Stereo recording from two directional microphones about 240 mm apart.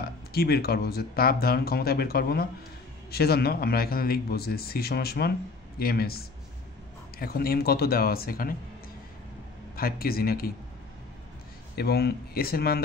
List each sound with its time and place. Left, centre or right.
0.3 s speech: left
9.8 s speech: left
11.7 s speech: left